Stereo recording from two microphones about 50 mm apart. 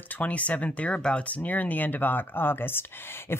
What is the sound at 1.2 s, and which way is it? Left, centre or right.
Speech, left.